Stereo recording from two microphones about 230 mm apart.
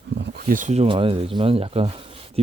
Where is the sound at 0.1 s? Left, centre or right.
Right.